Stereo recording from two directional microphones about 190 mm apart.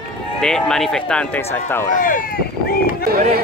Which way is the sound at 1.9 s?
45° left (ahead or behind).